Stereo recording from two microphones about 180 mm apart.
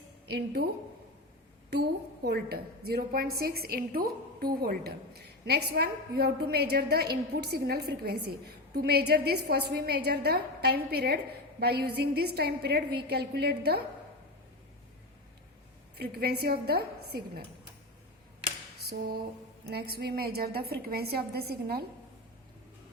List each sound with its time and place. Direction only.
0.3 s a woman's voice: 65° right (ahead or behind)
2.2 s a woman's voice: 60° right (ahead or behind)
16.0 s a woman's voice: 60° right (ahead or behind)
18.9 s a woman's voice: 55° right (ahead or behind)